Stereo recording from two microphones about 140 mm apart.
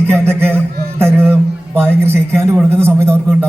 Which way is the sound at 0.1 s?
15° right (ahead or behind).